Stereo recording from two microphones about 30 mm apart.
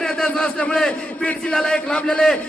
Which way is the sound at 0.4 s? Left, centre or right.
Left.